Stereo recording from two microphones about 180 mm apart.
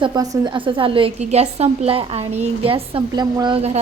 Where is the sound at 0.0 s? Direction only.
25° right (ahead or behind).